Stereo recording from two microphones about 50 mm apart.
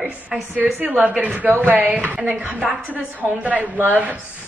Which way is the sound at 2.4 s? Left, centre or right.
Right.